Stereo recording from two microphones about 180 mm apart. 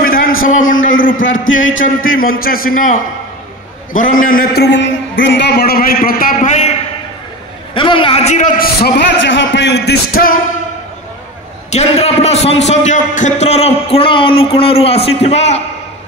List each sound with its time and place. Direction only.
0.7 s a sound: 90° left
1.1 s speech: 90° left
2.1 s a man's voice: 55° left (ahead or behind)
4.2 s a man's voice: 55° left (ahead or behind)
7.7 s a man's voice: 30° left (ahead or behind)
8.5 s a man's voice: 60° left (ahead or behind)
11.7 s a man's voice: 35° left (ahead or behind)